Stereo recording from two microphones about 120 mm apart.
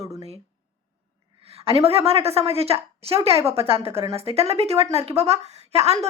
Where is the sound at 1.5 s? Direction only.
55° right (ahead or behind).